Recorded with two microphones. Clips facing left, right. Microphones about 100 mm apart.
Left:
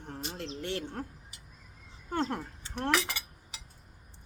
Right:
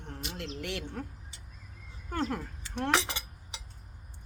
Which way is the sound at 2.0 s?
25° left (ahead or behind).